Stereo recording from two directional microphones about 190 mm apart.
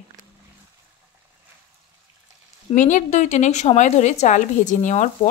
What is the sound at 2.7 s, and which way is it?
Speech, 40° left (ahead or behind).